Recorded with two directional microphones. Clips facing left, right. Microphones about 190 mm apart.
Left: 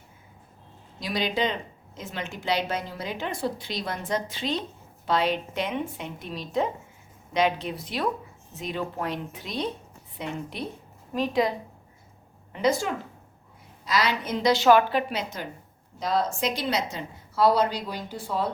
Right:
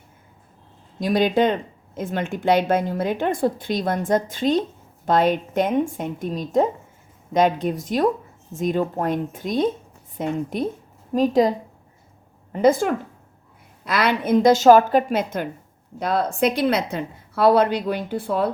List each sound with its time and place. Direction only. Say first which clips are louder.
0.9 s a woman's voice: right 9 dB; 50° right (ahead or behind)
12.5 s a woman's voice: right 7 dB; 50° right (ahead or behind)